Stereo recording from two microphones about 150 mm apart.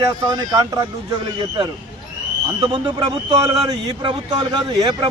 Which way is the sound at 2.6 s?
30° right (ahead or behind).